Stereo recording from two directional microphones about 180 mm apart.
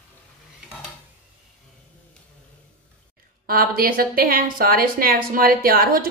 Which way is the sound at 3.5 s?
55° right (ahead or behind).